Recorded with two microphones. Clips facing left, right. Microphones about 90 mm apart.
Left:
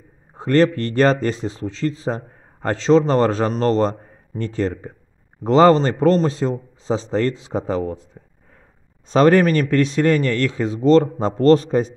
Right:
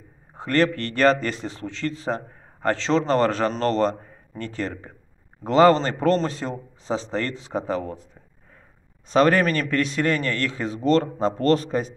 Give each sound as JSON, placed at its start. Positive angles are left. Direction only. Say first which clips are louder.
{"t": 0.4, "sound": "speech", "louder": "left 5 dB", "side_deg": 25}
{"t": 9.1, "sound": "speech", "louder": "left 4 dB", "side_deg": 30}